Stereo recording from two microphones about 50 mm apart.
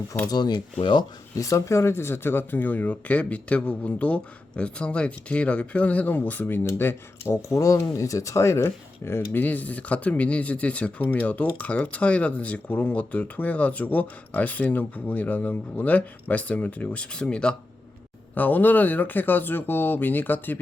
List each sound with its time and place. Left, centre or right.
1.5 s speech: left
1.9 s speech: left
7.4 s speech: left
9.3 s speech: left
18.3 s speech: left